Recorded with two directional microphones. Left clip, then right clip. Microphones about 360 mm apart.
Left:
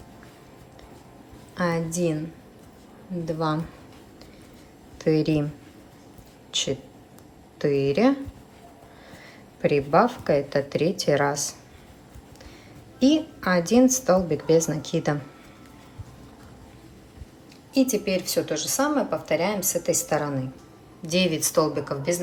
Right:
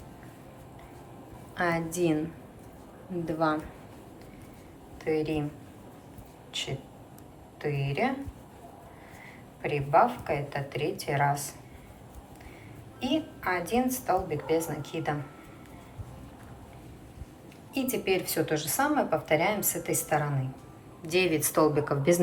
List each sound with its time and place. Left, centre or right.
1.5 s speech: centre
3.2 s a woman's voice: centre
5.1 s a woman's voice: centre
7.6 s a woman's voice: centre
9.6 s a woman's voice: centre
13.0 s a woman's voice: centre
17.7 s a woman's voice: centre